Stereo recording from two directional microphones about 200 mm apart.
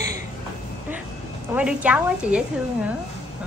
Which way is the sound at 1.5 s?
5° right (ahead or behind).